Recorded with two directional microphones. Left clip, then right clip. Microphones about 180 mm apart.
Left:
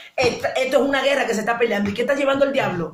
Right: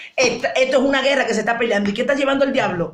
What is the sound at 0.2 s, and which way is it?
A woman's voice, 40° right (ahead or behind).